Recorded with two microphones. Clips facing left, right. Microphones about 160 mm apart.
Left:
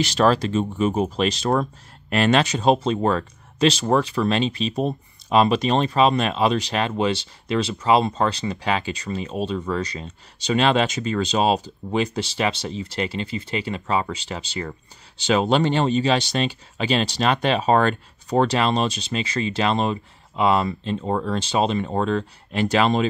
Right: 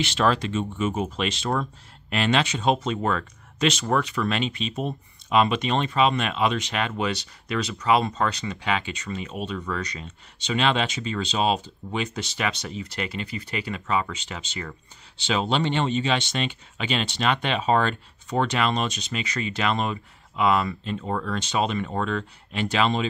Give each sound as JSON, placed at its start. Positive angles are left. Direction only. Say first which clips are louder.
{"t": 0.0, "sound": "speech", "louder": "left 4 dB", "side_deg": 40}